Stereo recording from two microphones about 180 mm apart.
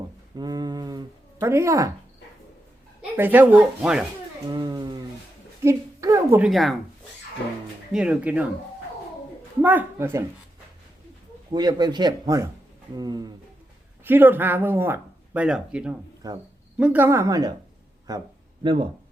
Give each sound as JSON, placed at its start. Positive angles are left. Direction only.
{"t": 0.3, "sound": "a sound", "side_deg": -20}
{"t": 3.0, "sound": "speech", "side_deg": -10}
{"t": 4.4, "sound": "a sound", "side_deg": -25}
{"t": 5.6, "sound": "a woman's voice", "side_deg": -15}
{"t": 6.4, "sound": "speech", "side_deg": 0}
{"t": 7.9, "sound": "speech", "side_deg": -5}
{"t": 9.6, "sound": "speech", "side_deg": -10}
{"t": 11.5, "sound": "speech", "side_deg": -25}
{"t": 14.0, "sound": "speech", "side_deg": -10}
{"t": 16.2, "sound": "speech", "side_deg": -20}
{"t": 16.7, "sound": "speech", "side_deg": -10}